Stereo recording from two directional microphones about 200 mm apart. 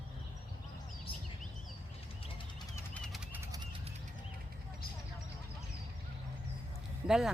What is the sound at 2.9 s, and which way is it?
Pigeon, 5° left (ahead or behind).